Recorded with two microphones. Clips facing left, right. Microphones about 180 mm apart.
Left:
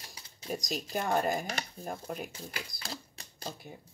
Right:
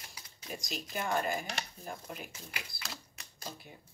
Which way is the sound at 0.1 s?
35° left (ahead or behind).